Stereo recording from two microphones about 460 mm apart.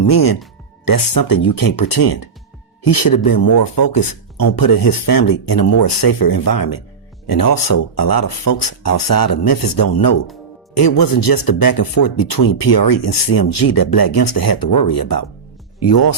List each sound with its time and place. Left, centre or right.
0.1 s speech: left